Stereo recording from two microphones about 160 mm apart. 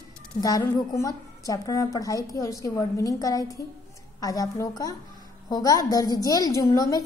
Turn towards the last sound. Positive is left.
turn(degrees=25)  # may be behind; listen again after turning